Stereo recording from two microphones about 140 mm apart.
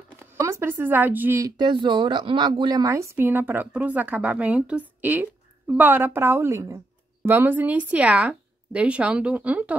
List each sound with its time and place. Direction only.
0.3 s speech: 20° right (ahead or behind)
1.4 s speech: 35° right (ahead or behind); by 9.8 s 10° right (ahead or behind)